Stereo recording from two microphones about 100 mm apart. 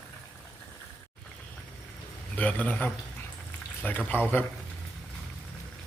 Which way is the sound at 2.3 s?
15° left (ahead or behind).